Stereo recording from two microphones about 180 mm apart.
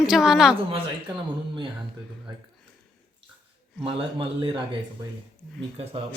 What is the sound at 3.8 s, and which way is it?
A man's voice, 30° right (ahead or behind).